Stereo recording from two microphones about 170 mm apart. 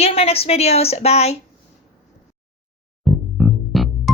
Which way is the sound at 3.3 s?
Centre (ahead or behind).